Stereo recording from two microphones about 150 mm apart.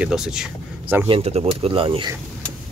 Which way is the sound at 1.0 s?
40° right (ahead or behind).